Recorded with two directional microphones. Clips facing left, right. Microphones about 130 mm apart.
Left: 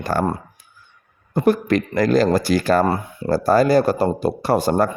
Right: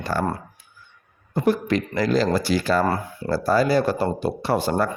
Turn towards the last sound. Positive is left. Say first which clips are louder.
# left 4 dB
turn(degrees=40)  # may be behind; listen again after turning